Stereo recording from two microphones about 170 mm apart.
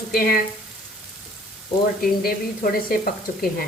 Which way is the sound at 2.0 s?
60° left (ahead or behind).